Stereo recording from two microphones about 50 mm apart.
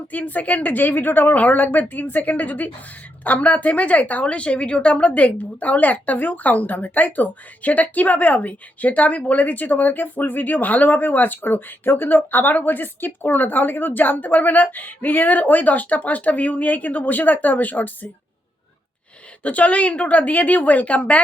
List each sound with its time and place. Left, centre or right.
0.1 s a woman's voice: left
19.4 s speech: left